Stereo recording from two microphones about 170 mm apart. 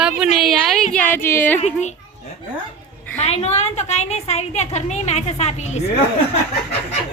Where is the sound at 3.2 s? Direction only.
40° left (ahead or behind).